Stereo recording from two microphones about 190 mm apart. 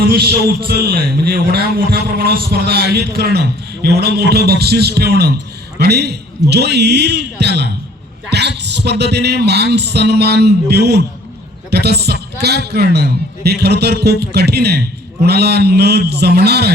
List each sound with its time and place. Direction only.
0.0 s a man's voice: 55° right (ahead or behind)